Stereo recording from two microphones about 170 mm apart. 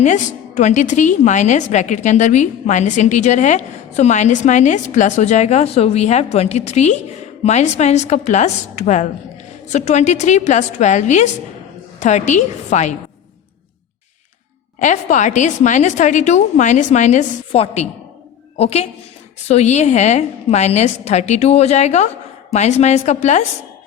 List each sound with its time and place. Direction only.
0.0 s a woman's voice: 45° left (ahead or behind)
14.8 s a woman's voice: 45° left (ahead or behind)